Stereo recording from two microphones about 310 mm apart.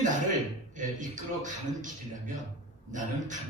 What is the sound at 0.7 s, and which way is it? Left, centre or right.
A man's voice, right.